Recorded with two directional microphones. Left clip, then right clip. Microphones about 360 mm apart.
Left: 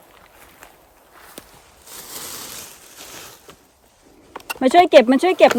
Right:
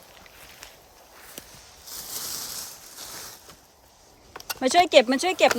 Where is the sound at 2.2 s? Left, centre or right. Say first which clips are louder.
Left 1 dB; left.